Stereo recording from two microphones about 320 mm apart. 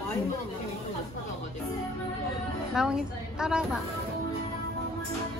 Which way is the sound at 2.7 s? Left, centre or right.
Centre.